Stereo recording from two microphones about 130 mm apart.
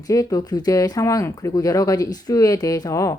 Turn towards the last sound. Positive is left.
turn(degrees=25)  # may be behind; listen again after turning